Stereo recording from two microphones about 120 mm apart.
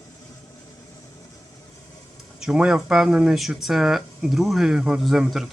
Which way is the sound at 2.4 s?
5° right (ahead or behind).